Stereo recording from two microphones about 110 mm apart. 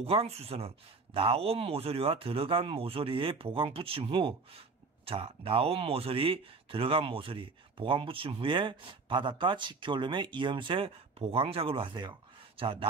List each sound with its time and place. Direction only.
0.0 s speech: 60° right (ahead or behind)